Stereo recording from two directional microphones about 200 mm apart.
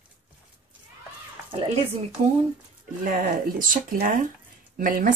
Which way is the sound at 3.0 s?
40° right (ahead or behind).